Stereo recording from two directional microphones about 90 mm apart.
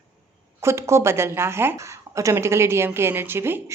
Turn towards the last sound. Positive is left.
turn(degrees=-25)  # may be behind; listen again after turning